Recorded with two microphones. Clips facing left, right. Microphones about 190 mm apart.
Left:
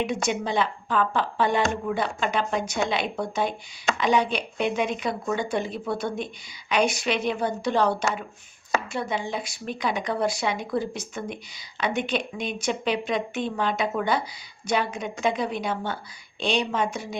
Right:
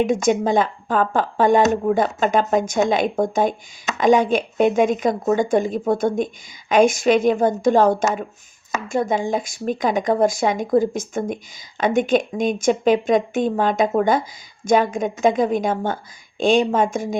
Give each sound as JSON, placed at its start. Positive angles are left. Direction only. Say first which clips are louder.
{"t": 0.0, "sound": "speech", "louder": "right 8 dB", "side_deg": -45}